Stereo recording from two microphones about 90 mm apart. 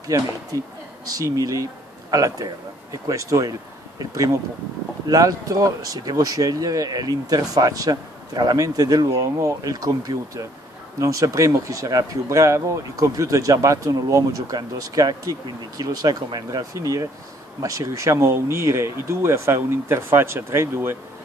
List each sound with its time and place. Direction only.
0.0 s speech: 40° right (ahead or behind)
5.0 s speech: 40° right (ahead or behind)
11.0 s speech: 40° right (ahead or behind)